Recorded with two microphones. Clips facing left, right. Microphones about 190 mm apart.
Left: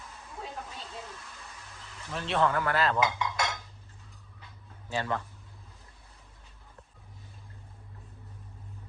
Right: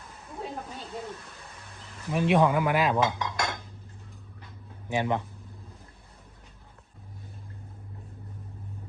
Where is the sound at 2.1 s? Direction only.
15° right (ahead or behind).